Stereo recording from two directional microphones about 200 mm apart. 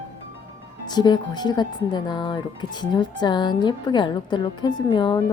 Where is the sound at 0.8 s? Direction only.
20° left (ahead or behind).